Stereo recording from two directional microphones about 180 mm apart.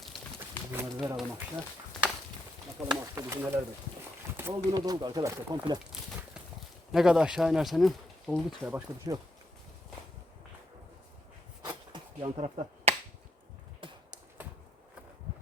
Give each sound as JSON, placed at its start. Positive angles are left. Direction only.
{"t": 0.3, "sound": "speech", "side_deg": -10}
{"t": 2.9, "sound": "speech", "side_deg": -15}
{"t": 6.9, "sound": "speech", "side_deg": -5}
{"t": 8.6, "sound": "speech", "side_deg": -15}
{"t": 11.6, "sound": "finger snapping", "side_deg": -25}
{"t": 13.8, "sound": "a sound", "side_deg": -30}